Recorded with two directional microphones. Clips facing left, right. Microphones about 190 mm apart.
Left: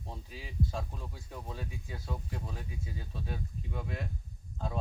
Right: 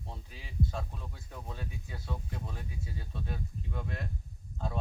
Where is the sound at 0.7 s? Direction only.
10° left (ahead or behind).